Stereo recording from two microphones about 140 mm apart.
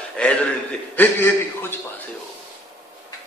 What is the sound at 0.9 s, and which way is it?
A man's voice, 15° left (ahead or behind).